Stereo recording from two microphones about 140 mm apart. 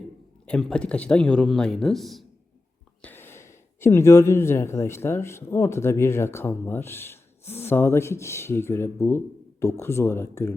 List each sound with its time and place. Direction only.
0.4 s speech: 5° left (ahead or behind)
3.0 s speech: 15° left (ahead or behind)